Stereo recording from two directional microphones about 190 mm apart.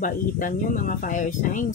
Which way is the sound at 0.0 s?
45° left (ahead or behind).